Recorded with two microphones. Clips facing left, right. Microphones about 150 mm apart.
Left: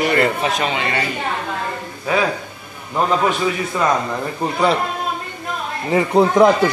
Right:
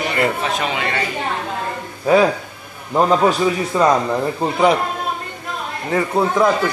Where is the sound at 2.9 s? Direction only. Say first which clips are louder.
Right 3 dB; 35° right (ahead or behind).